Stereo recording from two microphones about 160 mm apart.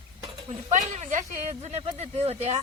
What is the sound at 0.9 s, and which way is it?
Speech, 50° right (ahead or behind).